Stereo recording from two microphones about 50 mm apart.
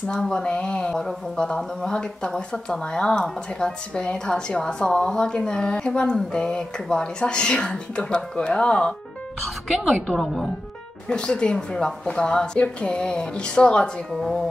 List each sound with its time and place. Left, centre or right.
0.1 s speech: centre
9.7 s speech: centre
11.1 s speech: centre